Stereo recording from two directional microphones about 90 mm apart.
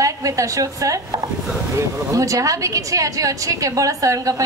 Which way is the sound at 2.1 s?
40° right (ahead or behind).